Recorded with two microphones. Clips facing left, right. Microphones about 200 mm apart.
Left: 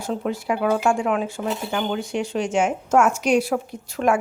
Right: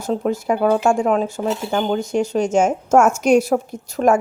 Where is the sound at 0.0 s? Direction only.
40° right (ahead or behind).